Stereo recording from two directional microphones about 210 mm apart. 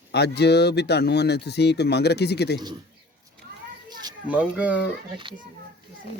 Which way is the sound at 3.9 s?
20° right (ahead or behind).